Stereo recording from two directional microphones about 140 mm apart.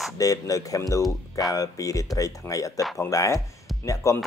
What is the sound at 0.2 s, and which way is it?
Speech, 25° left (ahead or behind).